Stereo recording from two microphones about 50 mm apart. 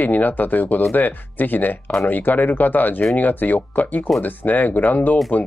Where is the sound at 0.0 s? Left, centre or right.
Left.